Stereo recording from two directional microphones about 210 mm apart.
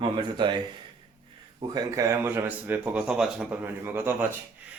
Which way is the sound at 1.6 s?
20° right (ahead or behind).